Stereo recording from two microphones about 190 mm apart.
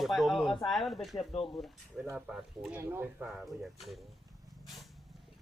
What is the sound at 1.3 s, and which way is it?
Speech, 30° left (ahead or behind).